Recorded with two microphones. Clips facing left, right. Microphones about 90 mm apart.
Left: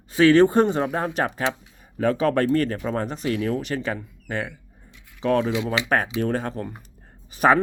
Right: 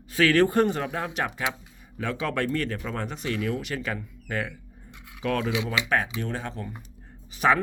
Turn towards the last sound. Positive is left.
turn(degrees=40)  # may be behind; listen again after turning